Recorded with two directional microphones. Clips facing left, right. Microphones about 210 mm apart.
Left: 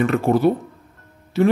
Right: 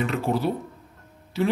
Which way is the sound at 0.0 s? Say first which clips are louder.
Left 8 dB; 55° left (ahead or behind).